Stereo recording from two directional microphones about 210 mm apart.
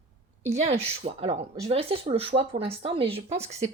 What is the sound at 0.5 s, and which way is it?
Speech, 30° right (ahead or behind).